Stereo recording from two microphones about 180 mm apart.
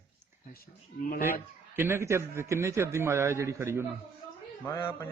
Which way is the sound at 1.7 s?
15° right (ahead or behind).